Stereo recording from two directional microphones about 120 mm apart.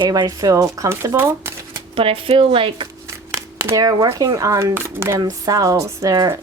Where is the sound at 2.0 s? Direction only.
50° right (ahead or behind).